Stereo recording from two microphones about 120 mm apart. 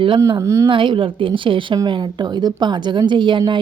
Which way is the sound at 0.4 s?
25° right (ahead or behind).